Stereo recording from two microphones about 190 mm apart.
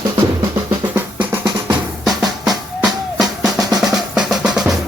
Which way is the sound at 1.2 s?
25° right (ahead or behind).